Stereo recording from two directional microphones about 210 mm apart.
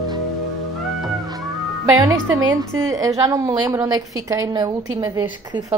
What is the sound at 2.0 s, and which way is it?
A woman's voice, 15° right (ahead or behind).